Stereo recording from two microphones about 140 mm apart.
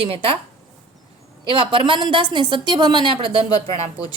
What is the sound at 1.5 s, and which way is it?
A woman's voice, 35° right (ahead or behind).